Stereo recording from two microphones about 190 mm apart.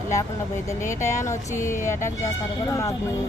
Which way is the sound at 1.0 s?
40° left (ahead or behind).